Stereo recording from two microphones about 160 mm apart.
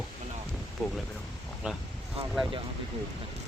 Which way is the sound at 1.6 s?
5° right (ahead or behind).